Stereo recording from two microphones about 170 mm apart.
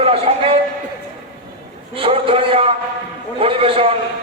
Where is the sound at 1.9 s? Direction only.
35° right (ahead or behind).